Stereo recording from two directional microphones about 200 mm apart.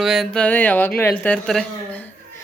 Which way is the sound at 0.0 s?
Centre (ahead or behind).